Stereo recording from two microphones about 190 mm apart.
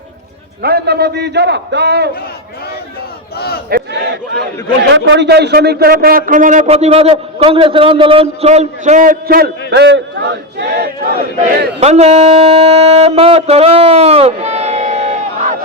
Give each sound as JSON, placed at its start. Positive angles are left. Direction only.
{"t": 0.6, "sound": "a man's voice", "side_deg": -55}
{"t": 3.3, "sound": "speech", "side_deg": 55}
{"t": 3.7, "sound": "a sound", "side_deg": -60}
{"t": 4.9, "sound": "a man's voice", "side_deg": -70}
{"t": 11.8, "sound": "speech", "side_deg": -35}